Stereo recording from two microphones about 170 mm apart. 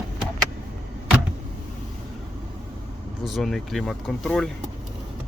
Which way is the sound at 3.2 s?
Centre (ahead or behind).